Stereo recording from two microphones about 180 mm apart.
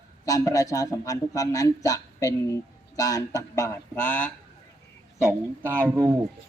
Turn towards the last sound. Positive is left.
turn(degrees=-15)  # may be behind; listen again after turning